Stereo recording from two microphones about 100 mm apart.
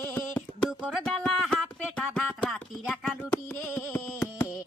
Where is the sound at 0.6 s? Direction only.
5° right (ahead or behind).